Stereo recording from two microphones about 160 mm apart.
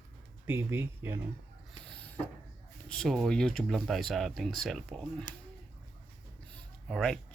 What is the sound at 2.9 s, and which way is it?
Speech, centre (ahead or behind).